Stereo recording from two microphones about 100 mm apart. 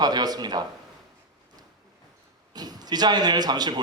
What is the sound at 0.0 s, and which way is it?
Speech, 40° right (ahead or behind).